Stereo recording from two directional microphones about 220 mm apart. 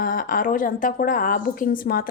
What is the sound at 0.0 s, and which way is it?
A woman's voice, 40° left (ahead or behind).